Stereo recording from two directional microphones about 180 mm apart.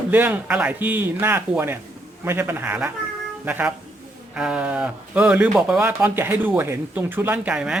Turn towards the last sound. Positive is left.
turn(degrees=-5)  # may be behind; listen again after turning